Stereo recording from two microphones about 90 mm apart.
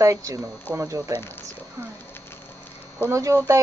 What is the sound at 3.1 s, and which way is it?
Speech, 35° right (ahead or behind).